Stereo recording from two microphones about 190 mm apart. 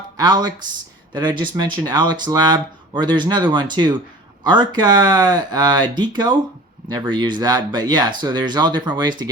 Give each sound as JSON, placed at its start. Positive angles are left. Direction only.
{"t": 0.2, "sound": "speech", "side_deg": -20}